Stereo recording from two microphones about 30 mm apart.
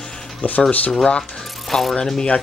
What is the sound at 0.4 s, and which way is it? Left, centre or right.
Speech, left.